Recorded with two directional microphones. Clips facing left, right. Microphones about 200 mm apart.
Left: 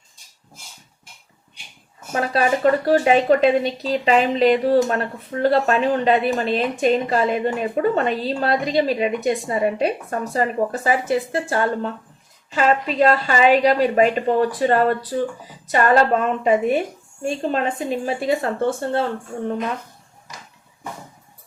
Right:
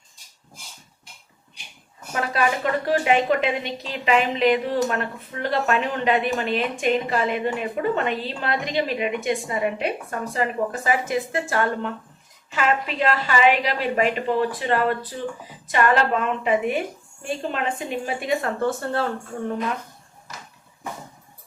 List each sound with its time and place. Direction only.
2.1 s a woman's voice: 35° left (ahead or behind)